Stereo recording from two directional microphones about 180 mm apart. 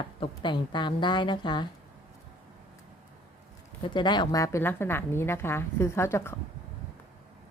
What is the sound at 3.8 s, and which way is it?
A woman's voice, 25° left (ahead or behind).